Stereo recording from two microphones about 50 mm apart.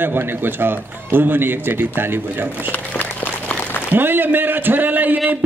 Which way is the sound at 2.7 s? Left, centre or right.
Left.